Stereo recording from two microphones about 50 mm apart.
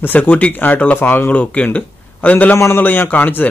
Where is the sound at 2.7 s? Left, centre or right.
Left.